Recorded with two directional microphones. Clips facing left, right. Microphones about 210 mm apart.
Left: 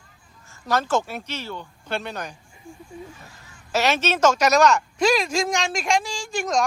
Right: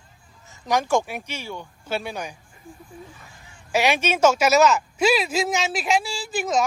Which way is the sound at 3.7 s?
15° right (ahead or behind).